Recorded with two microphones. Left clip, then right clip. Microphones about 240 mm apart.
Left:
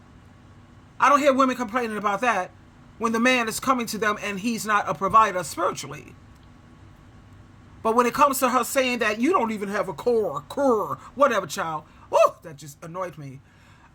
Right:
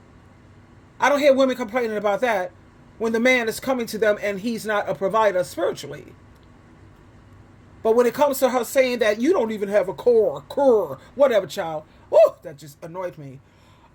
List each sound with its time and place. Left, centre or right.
1.2 s speech: centre
7.9 s speech: centre